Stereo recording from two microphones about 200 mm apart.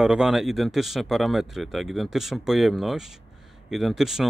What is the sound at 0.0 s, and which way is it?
Speech, 5° right (ahead or behind).